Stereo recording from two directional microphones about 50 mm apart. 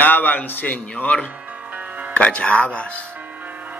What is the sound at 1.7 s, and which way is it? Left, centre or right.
Music, right.